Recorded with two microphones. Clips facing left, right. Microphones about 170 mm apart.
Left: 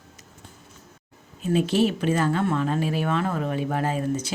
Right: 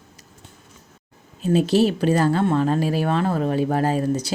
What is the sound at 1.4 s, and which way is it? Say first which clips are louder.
Speech: right 4 dB; 35° right (ahead or behind).